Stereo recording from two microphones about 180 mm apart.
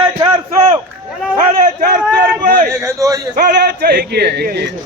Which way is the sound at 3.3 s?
55° right (ahead or behind).